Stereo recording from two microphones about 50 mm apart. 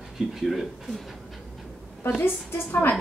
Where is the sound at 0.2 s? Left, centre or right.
Centre.